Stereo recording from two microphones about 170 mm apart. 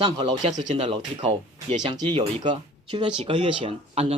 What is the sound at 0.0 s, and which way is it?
Speech, 35° right (ahead or behind).